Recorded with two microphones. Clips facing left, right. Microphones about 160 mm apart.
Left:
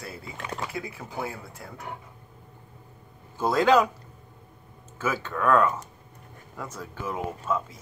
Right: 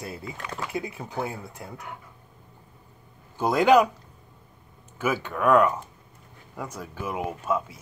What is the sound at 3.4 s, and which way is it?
Speech, 15° right (ahead or behind).